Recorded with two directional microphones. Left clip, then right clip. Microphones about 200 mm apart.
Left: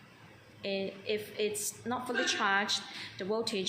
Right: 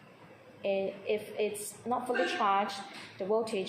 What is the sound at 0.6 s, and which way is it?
Speech, 45° left (ahead or behind).